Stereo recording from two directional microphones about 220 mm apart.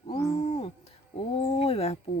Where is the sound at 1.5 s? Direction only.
25° left (ahead or behind).